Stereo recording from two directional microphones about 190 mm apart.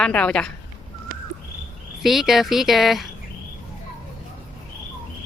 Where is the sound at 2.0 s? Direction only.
Centre (ahead or behind).